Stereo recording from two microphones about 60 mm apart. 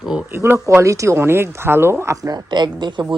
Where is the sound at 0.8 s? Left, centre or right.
Right.